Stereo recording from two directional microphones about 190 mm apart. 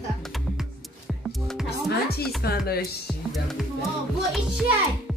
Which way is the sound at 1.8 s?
55° left (ahead or behind).